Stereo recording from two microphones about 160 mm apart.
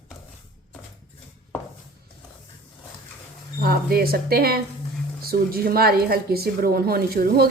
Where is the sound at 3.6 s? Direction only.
70° right (ahead or behind).